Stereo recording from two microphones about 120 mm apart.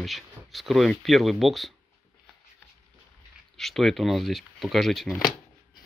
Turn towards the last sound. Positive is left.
turn(degrees=0)  # may be behind; listen again after turning